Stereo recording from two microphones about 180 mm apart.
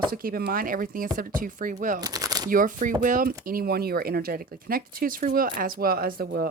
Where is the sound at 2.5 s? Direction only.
50° right (ahead or behind).